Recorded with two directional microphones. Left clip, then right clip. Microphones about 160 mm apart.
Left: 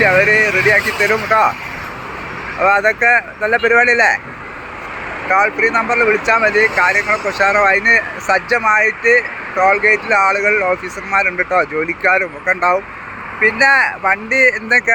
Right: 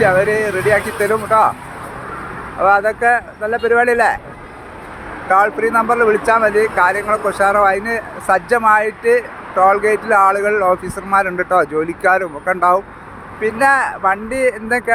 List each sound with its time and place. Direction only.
0.0 s speech: 10° right (ahead or behind)
2.6 s speech: 10° right (ahead or behind)
5.3 s speech: 20° right (ahead or behind)